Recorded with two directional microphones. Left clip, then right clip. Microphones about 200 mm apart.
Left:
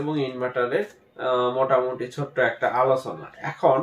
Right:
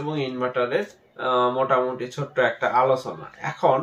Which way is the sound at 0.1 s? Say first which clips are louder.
Right 3 dB; centre (ahead or behind).